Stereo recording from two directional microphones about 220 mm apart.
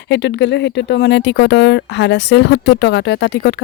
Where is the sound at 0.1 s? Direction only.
50° left (ahead or behind).